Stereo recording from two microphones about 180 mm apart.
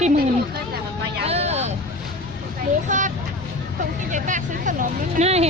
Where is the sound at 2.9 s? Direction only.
45° right (ahead or behind).